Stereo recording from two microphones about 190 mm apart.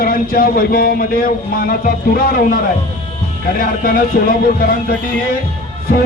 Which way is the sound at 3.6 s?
50° left (ahead or behind).